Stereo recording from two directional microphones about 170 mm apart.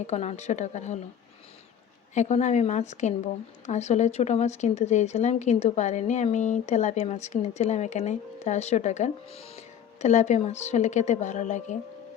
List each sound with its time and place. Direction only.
0.1 s speech: 40° left (ahead or behind)
2.1 s speech: 40° left (ahead or behind)